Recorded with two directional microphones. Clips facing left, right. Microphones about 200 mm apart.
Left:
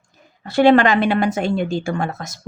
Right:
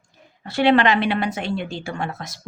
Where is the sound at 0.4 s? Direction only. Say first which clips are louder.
Left 4 dB; 45° left (ahead or behind).